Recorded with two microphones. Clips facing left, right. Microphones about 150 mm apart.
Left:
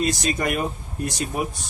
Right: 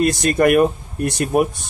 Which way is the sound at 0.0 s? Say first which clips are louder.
Right 8 dB; 60° right (ahead or behind).